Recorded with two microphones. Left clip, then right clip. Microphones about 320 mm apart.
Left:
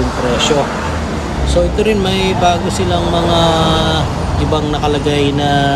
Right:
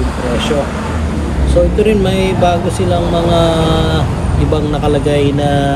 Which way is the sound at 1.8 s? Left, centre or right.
Centre.